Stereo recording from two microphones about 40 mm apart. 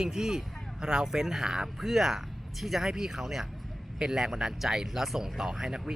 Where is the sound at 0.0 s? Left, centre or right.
Centre.